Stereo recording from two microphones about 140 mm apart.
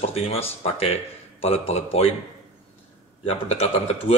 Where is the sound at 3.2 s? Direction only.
45° left (ahead or behind).